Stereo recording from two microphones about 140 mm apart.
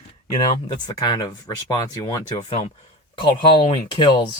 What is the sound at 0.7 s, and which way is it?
Speech, 30° left (ahead or behind).